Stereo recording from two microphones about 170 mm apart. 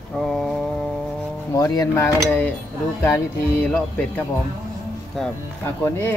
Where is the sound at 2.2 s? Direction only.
10° left (ahead or behind).